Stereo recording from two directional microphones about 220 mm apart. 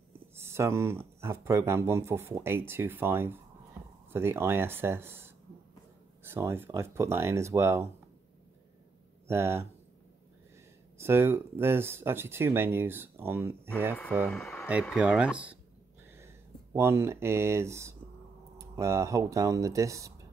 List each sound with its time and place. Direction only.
0.4 s speech: 10° right (ahead or behind)
9.3 s speech: 10° right (ahead or behind)
11.0 s speech: 10° right (ahead or behind)
14.2 s speech: centre (ahead or behind)